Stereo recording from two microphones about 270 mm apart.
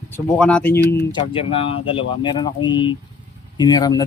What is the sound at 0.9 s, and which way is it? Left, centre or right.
Speech, centre.